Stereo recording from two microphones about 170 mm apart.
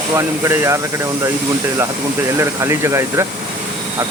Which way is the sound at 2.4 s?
15° right (ahead or behind).